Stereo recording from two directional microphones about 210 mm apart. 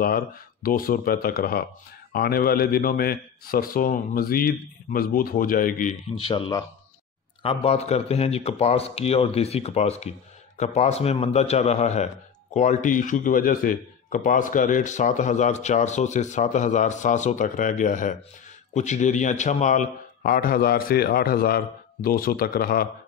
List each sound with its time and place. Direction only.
0.0 s a man's voice: 45° left (ahead or behind)
6.1 s a man's voice: 25° left (ahead or behind); by 22.8 s 45° left (ahead or behind)